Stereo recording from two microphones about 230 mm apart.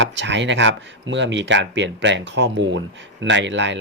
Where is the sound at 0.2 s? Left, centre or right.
Right.